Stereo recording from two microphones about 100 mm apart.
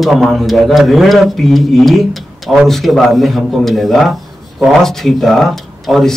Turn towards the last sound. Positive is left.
turn(degrees=5)  # may be behind; listen again after turning